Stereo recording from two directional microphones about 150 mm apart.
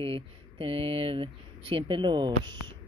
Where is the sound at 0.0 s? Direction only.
40° right (ahead or behind).